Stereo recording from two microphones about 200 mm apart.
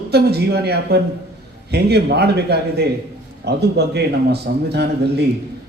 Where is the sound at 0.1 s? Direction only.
55° right (ahead or behind).